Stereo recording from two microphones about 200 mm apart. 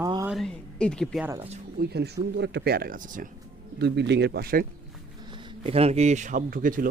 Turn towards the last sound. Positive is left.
turn(degrees=-45)  # may be behind; listen again after turning